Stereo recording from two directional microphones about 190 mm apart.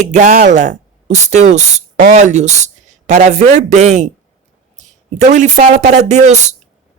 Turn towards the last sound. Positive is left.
turn(degrees=-35)  # may be behind; listen again after turning